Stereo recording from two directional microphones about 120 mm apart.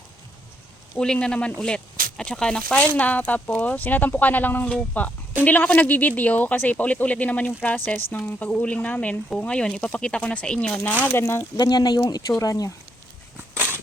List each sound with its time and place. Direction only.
0.9 s speech: 5° left (ahead or behind)
11.5 s speech: 35° left (ahead or behind)
13.3 s a sound: 15° right (ahead or behind)